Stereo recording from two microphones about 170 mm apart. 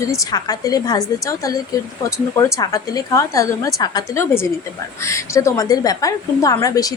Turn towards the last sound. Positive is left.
turn(degrees=20)  # may be behind; listen again after turning